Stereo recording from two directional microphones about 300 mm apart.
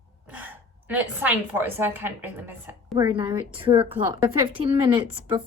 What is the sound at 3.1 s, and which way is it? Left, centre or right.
A woman's voice, centre.